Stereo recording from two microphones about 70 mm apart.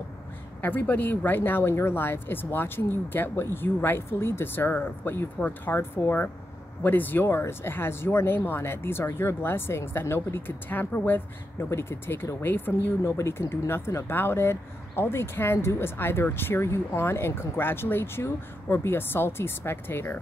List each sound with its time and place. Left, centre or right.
0.6 s speech: left